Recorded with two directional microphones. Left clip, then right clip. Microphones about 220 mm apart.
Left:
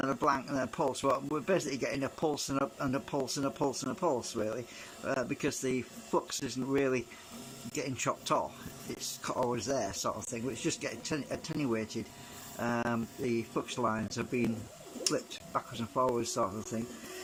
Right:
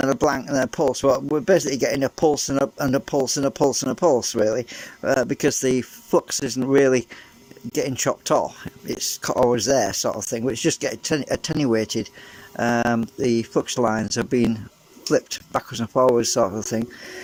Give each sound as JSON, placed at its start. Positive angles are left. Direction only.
{"t": 0.0, "sound": "speech", "side_deg": -30}